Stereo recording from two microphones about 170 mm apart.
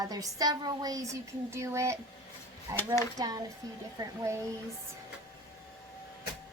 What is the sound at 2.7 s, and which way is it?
Speech, 20° right (ahead or behind).